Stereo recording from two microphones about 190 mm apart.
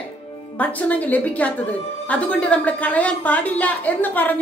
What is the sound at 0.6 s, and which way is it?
A woman's voice, 10° left (ahead or behind).